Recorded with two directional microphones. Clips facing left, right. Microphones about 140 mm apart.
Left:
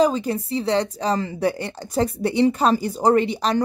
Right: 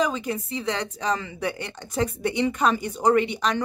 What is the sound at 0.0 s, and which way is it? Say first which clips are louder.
A woman's voice: left 6 dB; 35° left (ahead or behind).